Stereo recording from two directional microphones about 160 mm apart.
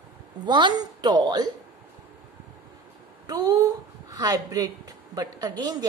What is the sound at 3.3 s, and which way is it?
A woman's voice, 25° right (ahead or behind).